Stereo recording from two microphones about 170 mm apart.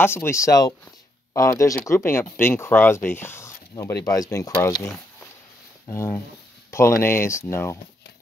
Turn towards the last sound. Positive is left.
turn(degrees=15)  # may be behind; listen again after turning